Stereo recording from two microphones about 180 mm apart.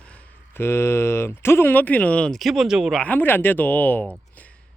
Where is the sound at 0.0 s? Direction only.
5° left (ahead or behind).